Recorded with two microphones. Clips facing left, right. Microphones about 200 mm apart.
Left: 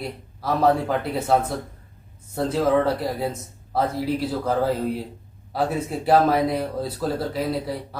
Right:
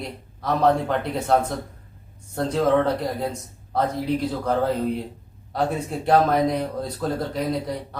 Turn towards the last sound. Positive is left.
turn(degrees=5)  # may be behind; listen again after turning